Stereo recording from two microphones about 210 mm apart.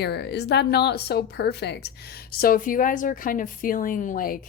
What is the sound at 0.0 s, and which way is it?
Speech, 50° left (ahead or behind).